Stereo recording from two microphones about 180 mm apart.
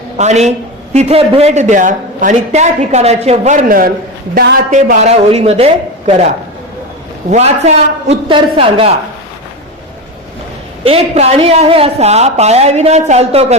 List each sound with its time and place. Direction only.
0.2 s a man's voice: 40° right (ahead or behind)
7.3 s a man's voice: 40° right (ahead or behind)
10.8 s a man's voice: 35° right (ahead or behind)